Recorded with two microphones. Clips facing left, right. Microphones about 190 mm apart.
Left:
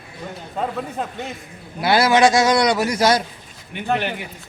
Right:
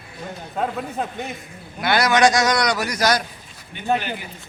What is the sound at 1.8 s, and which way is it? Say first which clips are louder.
A man's voice: left 2 dB; 30° left (ahead or behind).